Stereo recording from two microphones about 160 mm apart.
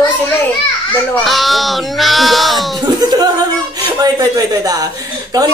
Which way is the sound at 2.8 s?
25° right (ahead or behind).